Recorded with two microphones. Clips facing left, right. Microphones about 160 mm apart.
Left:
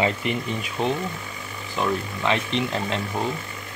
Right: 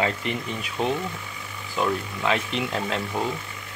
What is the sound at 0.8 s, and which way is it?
Speech, centre (ahead or behind).